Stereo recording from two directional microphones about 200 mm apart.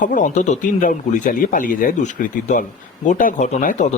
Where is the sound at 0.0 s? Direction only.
40° left (ahead or behind).